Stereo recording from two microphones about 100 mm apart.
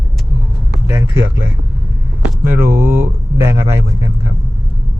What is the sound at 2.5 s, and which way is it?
Speech, 25° right (ahead or behind).